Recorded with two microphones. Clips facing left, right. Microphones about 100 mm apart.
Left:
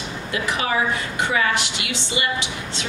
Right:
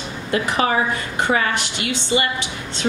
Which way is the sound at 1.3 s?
40° right (ahead or behind).